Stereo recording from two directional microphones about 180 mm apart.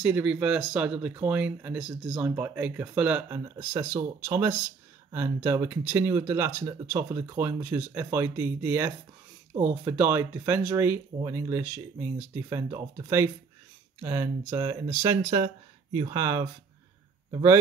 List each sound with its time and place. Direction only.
0.0 s a man's voice: 5° right (ahead or behind)